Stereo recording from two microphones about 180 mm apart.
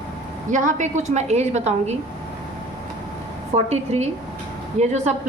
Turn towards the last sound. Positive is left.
turn(degrees=-40)  # may be behind; listen again after turning